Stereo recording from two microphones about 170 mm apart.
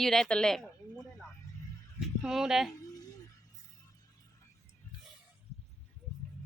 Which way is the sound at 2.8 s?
20° left (ahead or behind).